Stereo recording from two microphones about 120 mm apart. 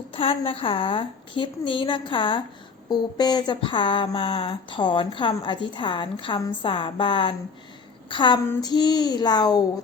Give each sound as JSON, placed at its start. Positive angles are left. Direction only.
{"t": 0.1, "sound": "speech", "side_deg": 50}